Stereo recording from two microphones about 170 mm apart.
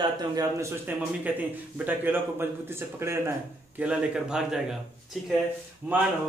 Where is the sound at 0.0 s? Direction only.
25° right (ahead or behind); by 5.3 s centre (ahead or behind).